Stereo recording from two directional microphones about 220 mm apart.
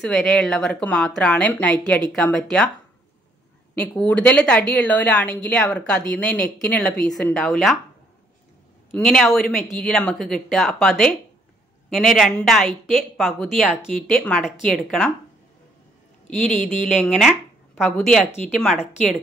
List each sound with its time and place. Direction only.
0.0 s a woman's voice: centre (ahead or behind)
3.7 s a woman's voice: 5° left (ahead or behind)
8.9 s a woman's voice: 5° left (ahead or behind)
16.3 s speech: 30° left (ahead or behind)
16.9 s a woman's voice: 5° left (ahead or behind)